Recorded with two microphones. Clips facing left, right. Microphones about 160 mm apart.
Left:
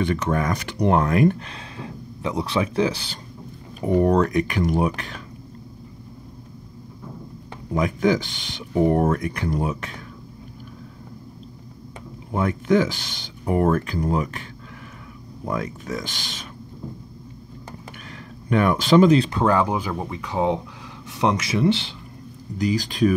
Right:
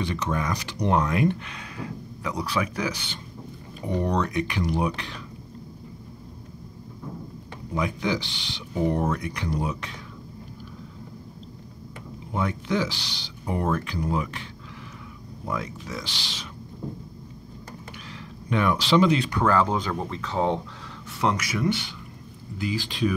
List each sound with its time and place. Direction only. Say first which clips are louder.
0.0 s speech: left 5 dB; 55° left (ahead or behind)
1.4 s speech: even; 30° left (ahead or behind)
3.9 s speech: left 7 dB; 50° left (ahead or behind)
7.7 s speech: left 6 dB; 45° left (ahead or behind)
12.4 s speech: left 6 dB; 50° left (ahead or behind)
15.5 s speech: left 4 dB; 50° left (ahead or behind)
18.5 s speech: left 4 dB; 50° left (ahead or behind)
19.1 s speech: left 6 dB; 30° left (ahead or behind)
19.4 s speech: left 2 dB; 15° left (ahead or behind)
22.6 s speech: left 6 dB; 40° left (ahead or behind)